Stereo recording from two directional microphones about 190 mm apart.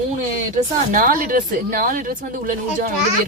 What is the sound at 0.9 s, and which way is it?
Speech, 50° right (ahead or behind).